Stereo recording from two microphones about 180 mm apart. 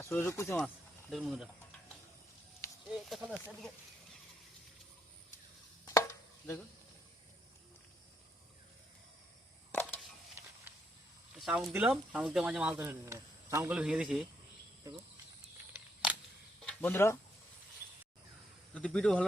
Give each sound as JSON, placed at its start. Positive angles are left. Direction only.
{"t": 0.0, "sound": "speech", "side_deg": 10}
{"t": 1.1, "sound": "a man's voice", "side_deg": 0}
{"t": 2.9, "sound": "snake", "side_deg": -5}
{"t": 5.8, "sound": "chopping", "side_deg": 15}
{"t": 11.3, "sound": "speech", "side_deg": -5}
{"t": 13.7, "sound": "a man's voice", "side_deg": -5}
{"t": 15.7, "sound": "camera", "side_deg": -5}
{"t": 16.6, "sound": "a sound", "side_deg": 5}
{"t": 18.7, "sound": "speech", "side_deg": 5}